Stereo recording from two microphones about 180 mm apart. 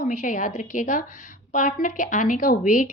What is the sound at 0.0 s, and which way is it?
A woman's voice, 45° left (ahead or behind).